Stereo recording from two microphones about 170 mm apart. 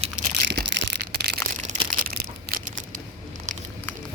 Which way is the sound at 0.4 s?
90° right.